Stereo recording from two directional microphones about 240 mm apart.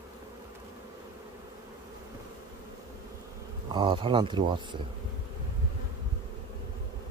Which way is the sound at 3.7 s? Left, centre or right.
Centre.